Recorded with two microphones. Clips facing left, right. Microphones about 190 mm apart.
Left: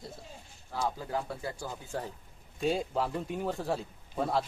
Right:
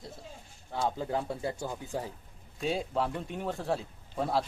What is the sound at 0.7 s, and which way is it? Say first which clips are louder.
Speech: right 2 dB; 25° right (ahead or behind).